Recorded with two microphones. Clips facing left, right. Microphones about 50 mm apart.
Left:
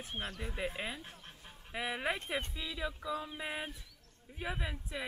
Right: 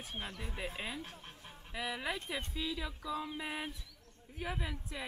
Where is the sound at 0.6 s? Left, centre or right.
Centre.